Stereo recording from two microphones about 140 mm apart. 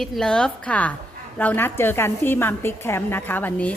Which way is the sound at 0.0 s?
5° left (ahead or behind).